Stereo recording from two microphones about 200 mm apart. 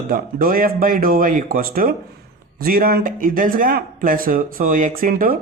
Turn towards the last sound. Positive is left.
turn(degrees=-45)  # may be behind; listen again after turning